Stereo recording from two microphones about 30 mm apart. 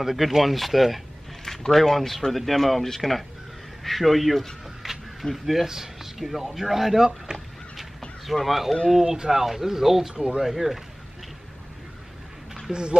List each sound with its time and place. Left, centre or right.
0.0 s speech: centre
4.8 s a sound: centre
5.3 s speech: centre
7.3 s speech: right
8.5 s speech: centre
8.9 s speech: centre
12.7 s speech: centre